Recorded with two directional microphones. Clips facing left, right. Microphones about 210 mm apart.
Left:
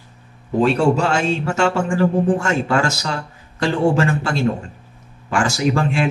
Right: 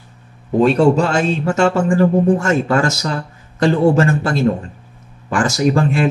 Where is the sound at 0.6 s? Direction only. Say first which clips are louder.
Right 4 dB; 40° right (ahead or behind).